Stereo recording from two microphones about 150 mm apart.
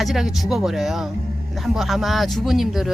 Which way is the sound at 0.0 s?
Centre (ahead or behind).